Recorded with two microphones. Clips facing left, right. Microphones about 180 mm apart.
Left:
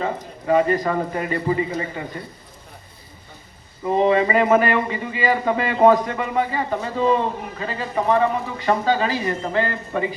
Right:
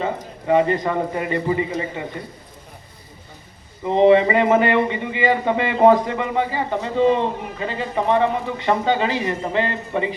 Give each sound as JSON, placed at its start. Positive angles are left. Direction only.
{"t": 0.0, "sound": "a man's voice", "side_deg": -25}
{"t": 3.8, "sound": "a man's voice", "side_deg": -25}